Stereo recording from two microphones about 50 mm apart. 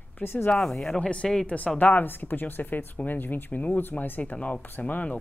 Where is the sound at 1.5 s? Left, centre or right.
Left.